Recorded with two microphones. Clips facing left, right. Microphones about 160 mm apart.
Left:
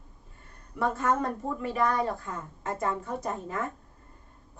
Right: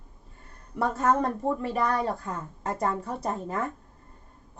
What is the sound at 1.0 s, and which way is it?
Speech, 40° right (ahead or behind).